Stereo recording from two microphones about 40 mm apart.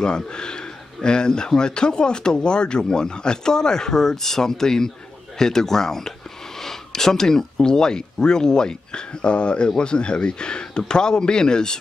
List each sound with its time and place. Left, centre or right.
0.0 s speech: left